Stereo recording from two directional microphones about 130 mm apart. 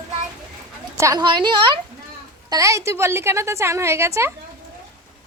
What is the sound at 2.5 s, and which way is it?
A woman's voice, 25° right (ahead or behind).